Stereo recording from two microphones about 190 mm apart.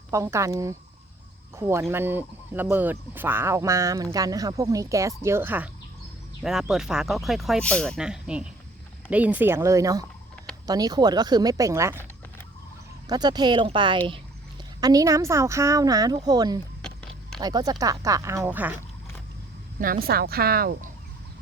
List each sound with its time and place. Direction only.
0.1 s speech: 15° right (ahead or behind)
13.1 s speech: 20° right (ahead or behind)
16.8 s a sound: 5° left (ahead or behind)
17.4 s speech: 20° right (ahead or behind)
19.8 s a woman's voice: 50° right (ahead or behind)